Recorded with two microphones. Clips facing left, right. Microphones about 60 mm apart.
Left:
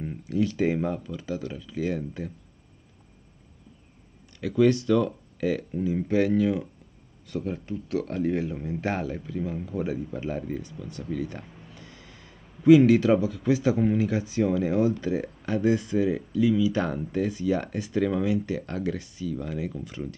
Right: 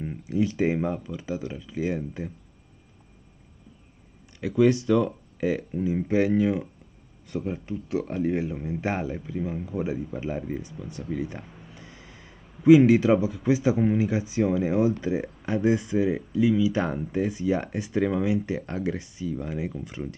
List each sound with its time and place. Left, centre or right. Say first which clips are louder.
0.0 s speech: right 1 dB; centre
4.4 s speech: even; centre